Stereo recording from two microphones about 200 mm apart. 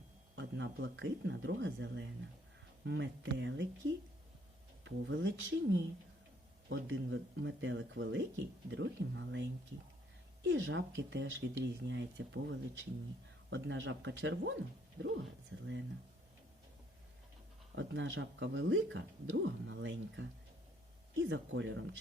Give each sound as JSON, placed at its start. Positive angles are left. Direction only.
{"t": 0.3, "sound": "speech", "side_deg": -65}
{"t": 4.8, "sound": "speech", "side_deg": -65}
{"t": 17.7, "sound": "speech", "side_deg": -70}